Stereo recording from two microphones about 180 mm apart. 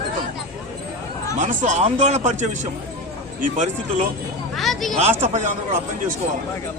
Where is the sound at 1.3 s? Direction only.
45° right (ahead or behind).